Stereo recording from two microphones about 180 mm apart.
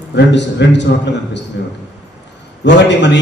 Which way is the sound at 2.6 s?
75° left (ahead or behind).